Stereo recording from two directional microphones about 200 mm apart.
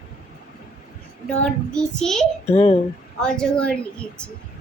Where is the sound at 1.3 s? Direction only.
5° left (ahead or behind).